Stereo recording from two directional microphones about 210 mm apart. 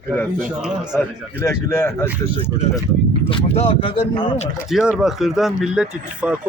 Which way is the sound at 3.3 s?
25° left (ahead or behind).